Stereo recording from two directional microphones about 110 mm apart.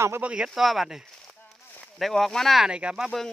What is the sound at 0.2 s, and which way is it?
Speech, 10° right (ahead or behind).